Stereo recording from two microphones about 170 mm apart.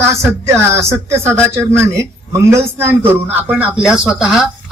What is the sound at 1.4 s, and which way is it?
Speech, 5° left (ahead or behind).